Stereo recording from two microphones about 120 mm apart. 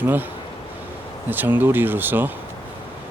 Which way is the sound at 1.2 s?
15° right (ahead or behind).